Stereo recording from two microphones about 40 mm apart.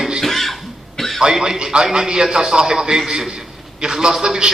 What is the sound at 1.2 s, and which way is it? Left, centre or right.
A man's voice, centre.